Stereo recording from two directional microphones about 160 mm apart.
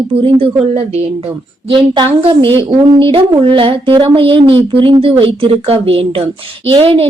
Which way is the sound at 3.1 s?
35° right (ahead or behind).